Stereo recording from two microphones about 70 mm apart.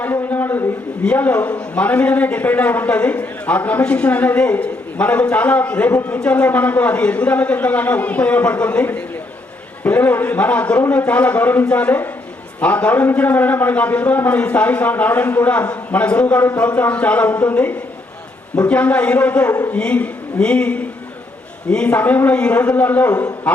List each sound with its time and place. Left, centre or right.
0.0 s a sound: left
1.0 s a man's voice: left
5.9 s a man's voice: left
6.1 s a man's voice: centre